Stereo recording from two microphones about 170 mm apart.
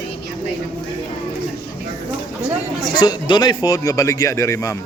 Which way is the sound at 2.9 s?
25° left (ahead or behind).